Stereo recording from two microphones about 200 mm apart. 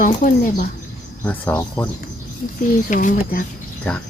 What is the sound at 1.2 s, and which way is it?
Speech, 10° left (ahead or behind).